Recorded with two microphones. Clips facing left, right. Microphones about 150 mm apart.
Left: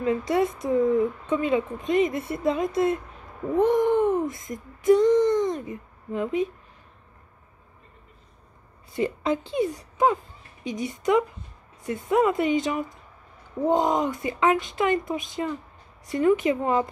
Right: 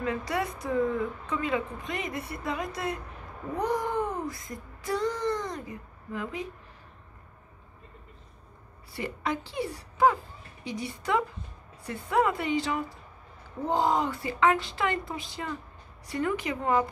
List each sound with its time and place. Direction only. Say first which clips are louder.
0.0 s a woman's voice: left 7 dB; 25° left (ahead or behind)
8.9 s a woman's voice: left 7 dB; 20° left (ahead or behind)